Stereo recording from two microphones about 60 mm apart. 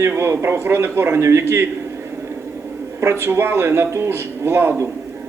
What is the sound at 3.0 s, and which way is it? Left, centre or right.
A man's voice, right.